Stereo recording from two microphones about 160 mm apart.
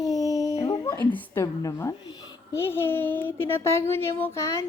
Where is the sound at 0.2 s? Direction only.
20° left (ahead or behind).